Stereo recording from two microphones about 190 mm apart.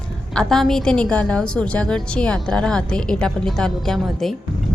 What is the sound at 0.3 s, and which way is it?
A woman's voice, centre (ahead or behind).